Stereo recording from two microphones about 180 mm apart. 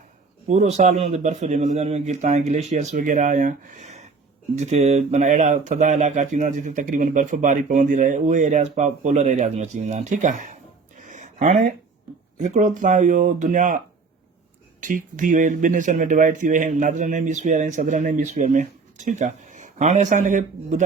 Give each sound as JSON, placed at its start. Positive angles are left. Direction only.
{"t": 0.4, "sound": "a man's voice", "side_deg": -40}
{"t": 10.9, "sound": "a sound", "side_deg": -45}
{"t": 12.4, "sound": "speech", "side_deg": -40}
{"t": 14.8, "sound": "speech", "side_deg": -45}